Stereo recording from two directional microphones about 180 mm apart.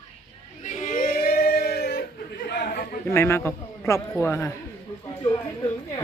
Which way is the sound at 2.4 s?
65° left (ahead or behind).